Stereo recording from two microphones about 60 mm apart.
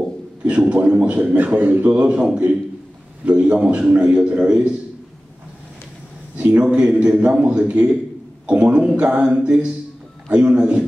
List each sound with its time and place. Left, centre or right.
0.4 s a man's voice: centre
6.3 s a sound: right
6.6 s a man's voice: centre